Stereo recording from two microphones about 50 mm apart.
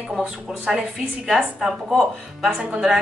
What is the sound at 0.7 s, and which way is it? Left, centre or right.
A woman's voice, centre.